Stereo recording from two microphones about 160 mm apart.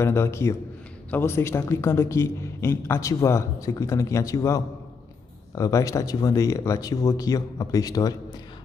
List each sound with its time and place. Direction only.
0.0 s a man's voice: 15° left (ahead or behind)